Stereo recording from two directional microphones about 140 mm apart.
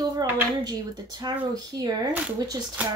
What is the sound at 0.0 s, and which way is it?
Speech, 25° right (ahead or behind).